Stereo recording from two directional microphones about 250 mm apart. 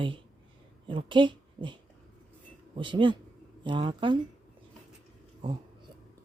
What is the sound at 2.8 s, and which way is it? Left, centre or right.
A woman's voice, centre.